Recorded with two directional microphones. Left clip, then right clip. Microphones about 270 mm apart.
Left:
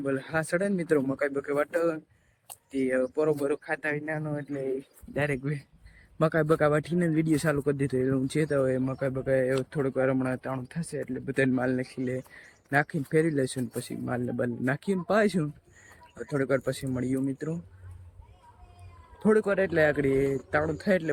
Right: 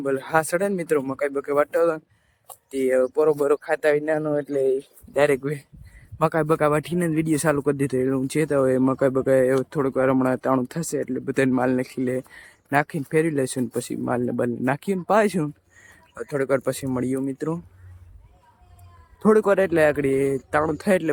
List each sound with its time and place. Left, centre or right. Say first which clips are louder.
0.0 s speech: right 8 dB; centre
19.2 s speech: right 6 dB; centre